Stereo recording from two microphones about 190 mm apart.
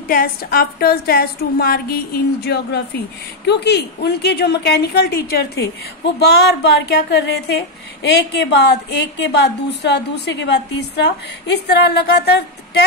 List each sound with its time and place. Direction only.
0.1 s a woman's voice: 50° left (ahead or behind)